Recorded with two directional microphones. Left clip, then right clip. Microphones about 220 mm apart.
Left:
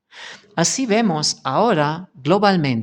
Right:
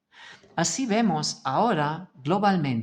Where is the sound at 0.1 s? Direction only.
40° left (ahead or behind).